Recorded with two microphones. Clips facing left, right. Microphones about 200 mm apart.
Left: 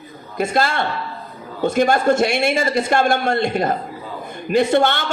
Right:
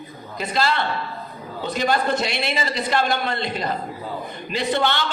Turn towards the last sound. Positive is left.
turn(degrees=50)  # may be behind; listen again after turning